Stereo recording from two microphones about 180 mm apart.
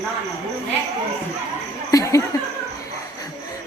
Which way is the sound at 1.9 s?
20° left (ahead or behind).